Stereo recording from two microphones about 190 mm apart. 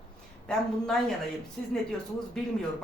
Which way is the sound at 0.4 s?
Centre (ahead or behind).